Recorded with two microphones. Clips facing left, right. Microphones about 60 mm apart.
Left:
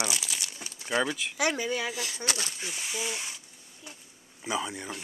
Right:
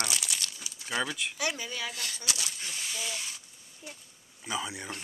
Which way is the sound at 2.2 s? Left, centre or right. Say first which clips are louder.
Left 4 dB; left.